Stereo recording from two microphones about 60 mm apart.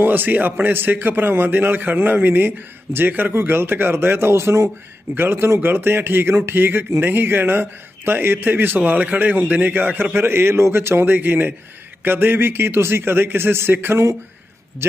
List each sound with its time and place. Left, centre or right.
0.0 s a man's voice: right
5.1 s a man's voice: right
10.2 s a man's voice: right